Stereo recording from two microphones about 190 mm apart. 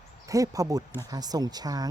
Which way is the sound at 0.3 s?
15° right (ahead or behind).